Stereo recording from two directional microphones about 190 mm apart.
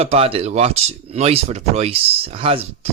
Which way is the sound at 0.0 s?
30° right (ahead or behind).